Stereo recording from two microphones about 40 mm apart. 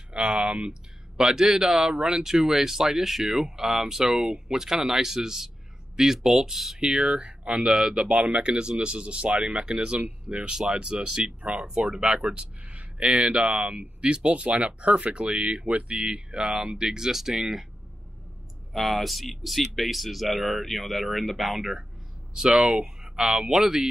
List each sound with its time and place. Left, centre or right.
0.1 s speech: centre
2.0 s speech: right
2.2 s speech: centre
6.9 s speech: centre; by 13.8 s right
14.0 s speech: right
15.3 s speech: right
15.6 s speech: right
16.0 s speech: centre
18.7 s speech: centre
22.3 s speech: centre